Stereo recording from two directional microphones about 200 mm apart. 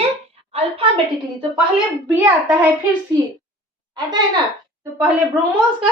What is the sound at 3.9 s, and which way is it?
Speech, 20° right (ahead or behind).